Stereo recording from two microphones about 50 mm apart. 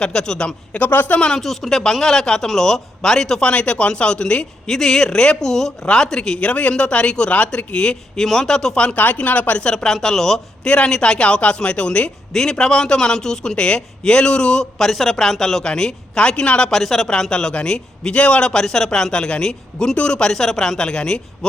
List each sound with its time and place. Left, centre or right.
0.0 s speech: centre
0.9 s speech: left
1.3 s speech: centre
3.4 s speech: left
8.8 s speech: left
9.6 s speech: centre
10.7 s speech: centre
16.7 s speech: centre
18.6 s speech: centre
20.3 s speech: centre